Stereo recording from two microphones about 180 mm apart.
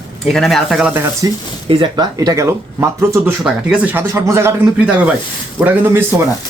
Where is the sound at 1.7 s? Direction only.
25° right (ahead or behind).